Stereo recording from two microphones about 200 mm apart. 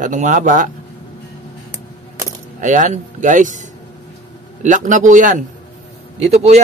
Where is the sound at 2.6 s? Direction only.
40° right (ahead or behind).